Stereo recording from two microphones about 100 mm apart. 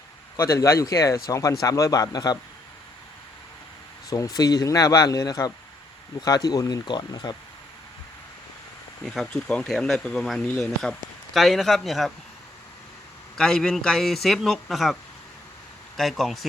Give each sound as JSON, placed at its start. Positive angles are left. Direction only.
{"t": 0.3, "sound": "speech", "side_deg": 30}
{"t": 4.1, "sound": "speech", "side_deg": 40}
{"t": 9.0, "sound": "speech", "side_deg": 5}
{"t": 13.3, "sound": "speech", "side_deg": 5}
{"t": 16.0, "sound": "speech", "side_deg": 0}